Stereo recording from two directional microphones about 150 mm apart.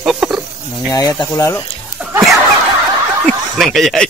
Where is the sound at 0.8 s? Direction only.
25° left (ahead or behind).